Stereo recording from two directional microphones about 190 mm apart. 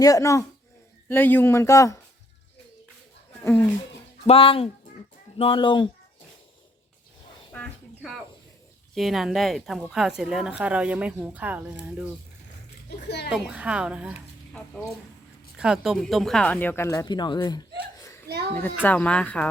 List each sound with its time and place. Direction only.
0.0 s speech: 15° left (ahead or behind)
3.4 s speech: 10° left (ahead or behind)
4.3 s speech: 30° left (ahead or behind)
7.5 s a sound: 5° left (ahead or behind)
9.0 s speech: centre (ahead or behind)
13.1 s speech: 60° left (ahead or behind)
13.3 s speech: 5° right (ahead or behind)
14.8 s speech: 10° left (ahead or behind)
15.5 s speech: 5° right (ahead or behind); by 17.6 s 20° left (ahead or behind)
18.5 s speech: 10° left (ahead or behind)